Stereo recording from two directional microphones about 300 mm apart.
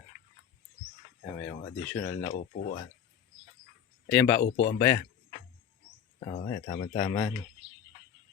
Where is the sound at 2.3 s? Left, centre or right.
Left.